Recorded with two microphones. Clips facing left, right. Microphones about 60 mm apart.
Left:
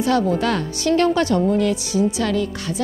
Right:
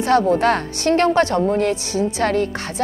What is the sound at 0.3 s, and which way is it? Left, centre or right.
A woman's voice, right.